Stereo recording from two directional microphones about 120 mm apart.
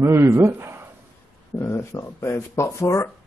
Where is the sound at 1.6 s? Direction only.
25° left (ahead or behind).